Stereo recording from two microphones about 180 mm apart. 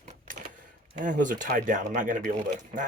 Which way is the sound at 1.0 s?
45° right (ahead or behind).